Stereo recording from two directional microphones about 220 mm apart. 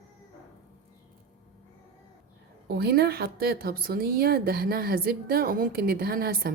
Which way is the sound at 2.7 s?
45° right (ahead or behind).